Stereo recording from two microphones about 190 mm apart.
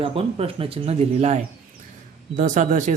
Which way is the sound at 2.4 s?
40° right (ahead or behind).